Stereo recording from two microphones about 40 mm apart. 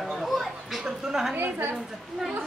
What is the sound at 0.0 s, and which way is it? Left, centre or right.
Chatter, centre.